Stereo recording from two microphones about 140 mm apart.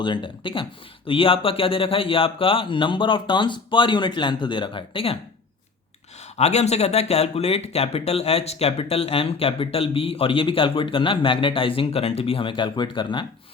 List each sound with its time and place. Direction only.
0.0 s speech: 35° left (ahead or behind)
6.3 s speech: 50° left (ahead or behind)